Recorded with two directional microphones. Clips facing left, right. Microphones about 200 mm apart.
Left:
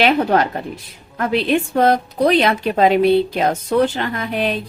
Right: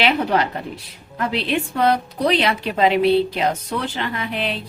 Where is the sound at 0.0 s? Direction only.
45° left (ahead or behind).